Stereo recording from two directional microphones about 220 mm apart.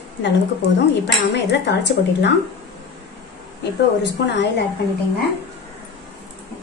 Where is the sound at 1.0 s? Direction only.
50° left (ahead or behind).